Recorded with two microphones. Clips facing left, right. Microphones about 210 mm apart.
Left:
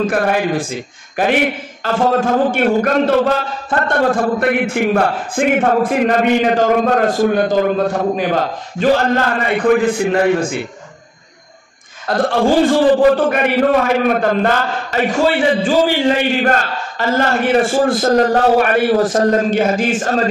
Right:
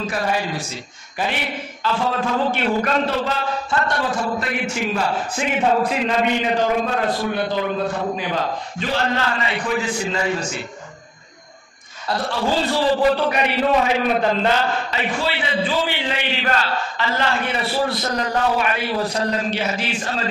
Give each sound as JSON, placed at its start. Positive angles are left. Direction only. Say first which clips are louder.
{"t": 0.0, "sound": "a man's voice", "louder": "left 7 dB", "side_deg": 55}
{"t": 12.1, "sound": "a man's voice", "louder": "left 8 dB", "side_deg": 50}